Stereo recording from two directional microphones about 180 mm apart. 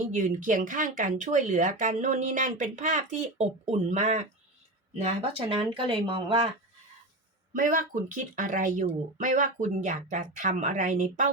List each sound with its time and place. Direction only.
0.0 s speech: 45° right (ahead or behind)
5.0 s speech: 30° right (ahead or behind)
7.5 s speech: 50° right (ahead or behind)